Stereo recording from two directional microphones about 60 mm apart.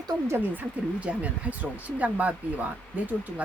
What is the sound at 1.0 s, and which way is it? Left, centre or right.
Speech, right.